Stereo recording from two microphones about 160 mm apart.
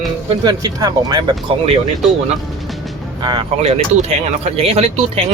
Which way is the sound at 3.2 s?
25° right (ahead or behind).